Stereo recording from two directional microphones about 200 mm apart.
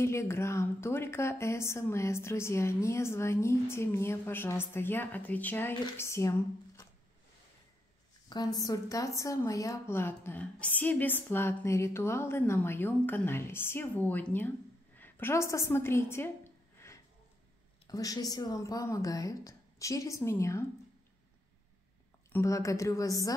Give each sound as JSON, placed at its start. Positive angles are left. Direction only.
{"t": 0.0, "sound": "a woman's voice", "side_deg": 15}
{"t": 8.3, "sound": "a woman's voice", "side_deg": 20}
{"t": 15.0, "sound": "a sound", "side_deg": 10}
{"t": 17.8, "sound": "a woman's voice", "side_deg": 15}
{"t": 22.3, "sound": "a woman's voice", "side_deg": 15}